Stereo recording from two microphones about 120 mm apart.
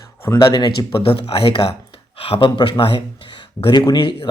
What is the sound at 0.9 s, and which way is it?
Speech, 50° left (ahead or behind).